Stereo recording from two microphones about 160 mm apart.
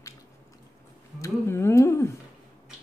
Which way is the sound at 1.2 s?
15° left (ahead or behind).